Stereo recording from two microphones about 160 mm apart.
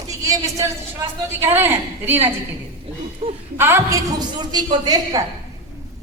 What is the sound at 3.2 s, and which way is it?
Speech, 35° right (ahead or behind).